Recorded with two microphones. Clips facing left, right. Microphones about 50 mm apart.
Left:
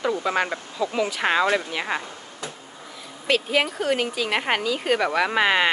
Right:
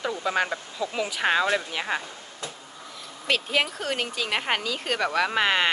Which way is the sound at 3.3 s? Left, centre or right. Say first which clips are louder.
Left 3 dB; centre.